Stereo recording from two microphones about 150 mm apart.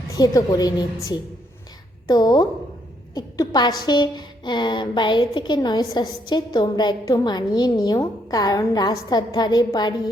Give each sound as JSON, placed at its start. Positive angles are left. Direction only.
{"t": 0.2, "sound": "a woman's voice", "side_deg": 25}